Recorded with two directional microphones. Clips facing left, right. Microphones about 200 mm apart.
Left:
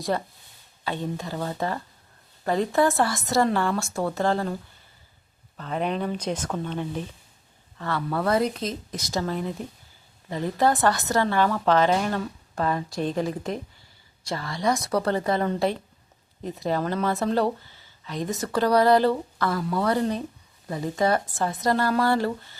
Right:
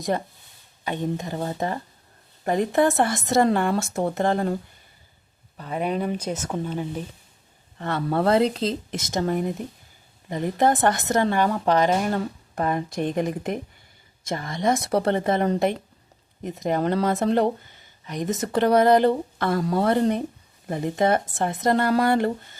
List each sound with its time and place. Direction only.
0.9 s a woman's voice: 20° right (ahead or behind)
5.5 s speech: 10° right (ahead or behind)
7.8 s a woman's voice: 20° right (ahead or behind)
12.1 s a woman's voice: 20° right (ahead or behind)